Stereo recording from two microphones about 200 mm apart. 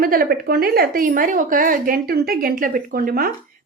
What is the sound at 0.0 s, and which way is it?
A woman's voice, 45° right (ahead or behind).